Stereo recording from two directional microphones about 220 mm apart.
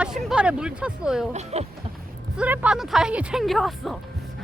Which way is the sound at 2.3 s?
5° right (ahead or behind).